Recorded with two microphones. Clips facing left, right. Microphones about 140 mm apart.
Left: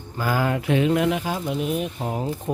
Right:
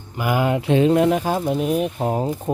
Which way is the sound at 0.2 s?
20° right (ahead or behind).